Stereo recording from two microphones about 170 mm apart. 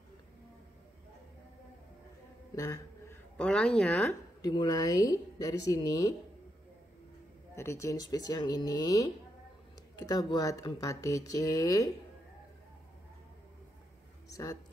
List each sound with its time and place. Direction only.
2.5 s a sound: 20° left (ahead or behind)
3.3 s a woman's voice: 5° left (ahead or behind); by 6.1 s 20° left (ahead or behind)
7.5 s a woman's voice: 15° left (ahead or behind)
14.3 s speech: 20° left (ahead or behind)